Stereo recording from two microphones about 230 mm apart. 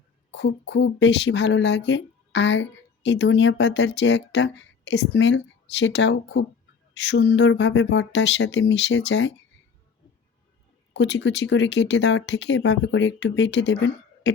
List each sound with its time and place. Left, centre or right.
0.3 s speech: left
10.9 s speech: left